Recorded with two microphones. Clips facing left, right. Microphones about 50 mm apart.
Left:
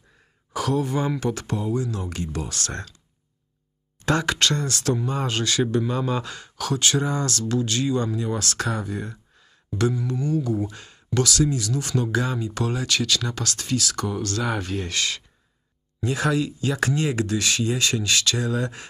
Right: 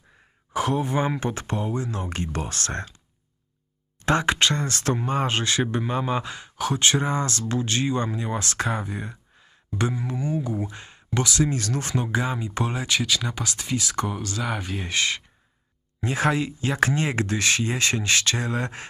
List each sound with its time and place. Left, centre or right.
0.5 s speech: right
4.0 s speech: right
11.4 s speech: right
11.9 s speech: right
13.0 s speech: centre
14.2 s speech: centre
14.9 s speech: right